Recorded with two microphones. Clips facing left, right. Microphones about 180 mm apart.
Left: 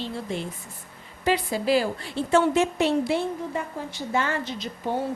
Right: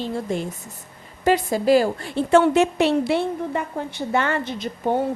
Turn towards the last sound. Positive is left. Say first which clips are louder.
# right 5 dB
turn(degrees=-55)  # may be behind; listen again after turning